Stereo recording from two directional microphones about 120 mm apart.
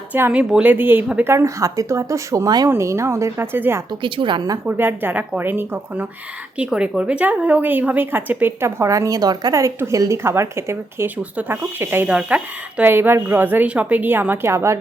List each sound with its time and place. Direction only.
0.1 s a woman's voice: 15° right (ahead or behind)
4.0 s a woman's voice: 40° right (ahead or behind)
4.6 s a woman's voice: 15° right (ahead or behind)